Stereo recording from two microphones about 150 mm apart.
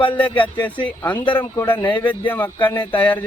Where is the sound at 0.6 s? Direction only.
10° left (ahead or behind).